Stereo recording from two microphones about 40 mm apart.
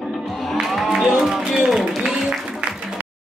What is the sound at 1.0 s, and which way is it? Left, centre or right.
Speech, centre.